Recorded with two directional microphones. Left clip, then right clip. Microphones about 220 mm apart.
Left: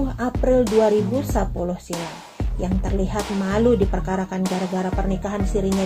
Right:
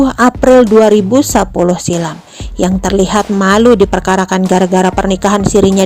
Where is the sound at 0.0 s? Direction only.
45° right (ahead or behind).